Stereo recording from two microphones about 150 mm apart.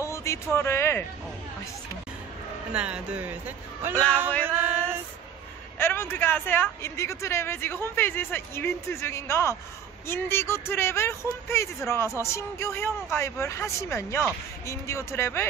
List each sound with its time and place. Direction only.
0.0 s speech: 20° left (ahead or behind)
2.7 s speech: 10° right (ahead or behind)
4.5 s music: 15° right (ahead or behind)
5.8 s speech: 15° left (ahead or behind)